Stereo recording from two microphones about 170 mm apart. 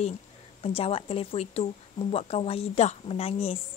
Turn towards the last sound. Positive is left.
turn(degrees=35)  # may be behind; listen again after turning